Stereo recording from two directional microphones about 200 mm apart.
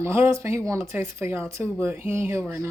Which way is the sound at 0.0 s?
10° right (ahead or behind).